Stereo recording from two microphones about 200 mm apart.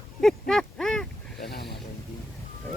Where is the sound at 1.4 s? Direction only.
50° left (ahead or behind).